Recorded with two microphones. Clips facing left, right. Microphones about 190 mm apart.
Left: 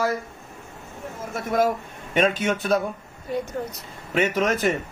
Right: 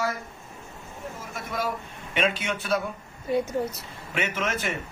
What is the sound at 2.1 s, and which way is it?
Speech, 45° left (ahead or behind).